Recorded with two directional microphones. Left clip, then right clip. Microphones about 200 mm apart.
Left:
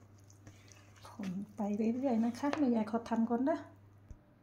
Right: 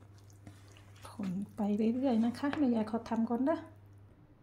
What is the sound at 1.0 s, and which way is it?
A woman's voice, 25° right (ahead or behind).